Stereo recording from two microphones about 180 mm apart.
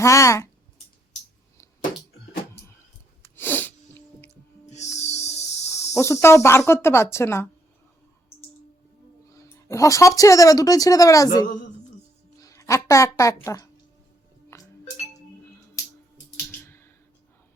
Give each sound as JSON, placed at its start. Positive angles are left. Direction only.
{"t": 0.0, "sound": "speech", "side_deg": 15}
{"t": 3.3, "sound": "sneeze", "side_deg": 10}
{"t": 4.6, "sound": "owl", "side_deg": 40}
{"t": 4.9, "sound": "music", "side_deg": 40}
{"t": 5.8, "sound": "speech", "side_deg": 15}
{"t": 9.3, "sound": "speech", "side_deg": 15}
{"t": 14.5, "sound": "music", "side_deg": 15}
{"t": 16.5, "sound": "typing", "side_deg": 15}